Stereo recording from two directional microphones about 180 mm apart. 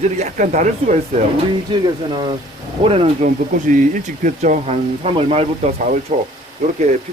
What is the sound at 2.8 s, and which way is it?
Speech, 30° right (ahead or behind).